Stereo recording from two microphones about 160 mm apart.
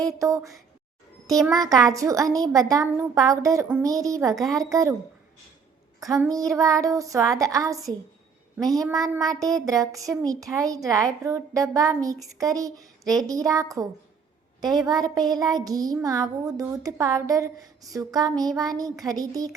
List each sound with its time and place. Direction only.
0.0 s a child's voice: 20° right (ahead or behind)
6.5 s a child's voice: 20° right (ahead or behind)